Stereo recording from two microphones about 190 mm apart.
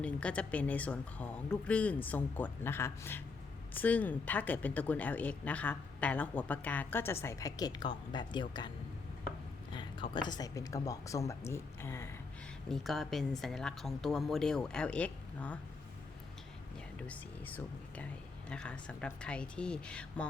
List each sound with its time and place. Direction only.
0.0 s speech: 5° left (ahead or behind); by 8.7 s 25° left (ahead or behind)
10.2 s speech: 20° left (ahead or behind)
12.7 s speech: centre (ahead or behind)
17.0 s speech: 10° left (ahead or behind)